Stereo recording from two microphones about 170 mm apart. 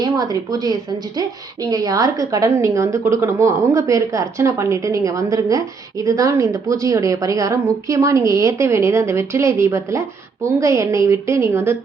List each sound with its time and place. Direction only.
0.0 s a woman's voice: 20° right (ahead or behind)